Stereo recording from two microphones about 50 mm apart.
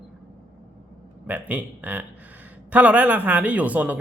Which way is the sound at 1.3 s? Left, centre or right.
Right.